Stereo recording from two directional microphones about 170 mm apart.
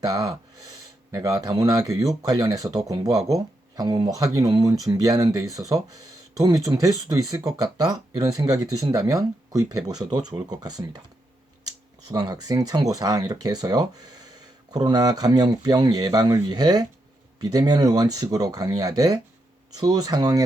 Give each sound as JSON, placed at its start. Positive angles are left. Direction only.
{"t": 0.0, "sound": "speech", "side_deg": -20}
{"t": 12.0, "sound": "speech", "side_deg": -25}